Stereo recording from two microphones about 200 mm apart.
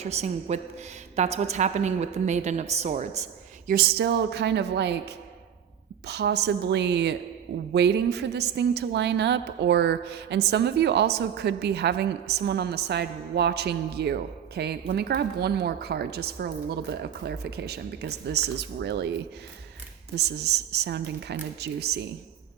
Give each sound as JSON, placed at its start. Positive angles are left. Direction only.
{"t": 0.0, "sound": "a woman's voice", "side_deg": -35}
{"t": 3.7, "sound": "a woman's voice", "side_deg": -50}
{"t": 20.1, "sound": "a woman's voice", "side_deg": -55}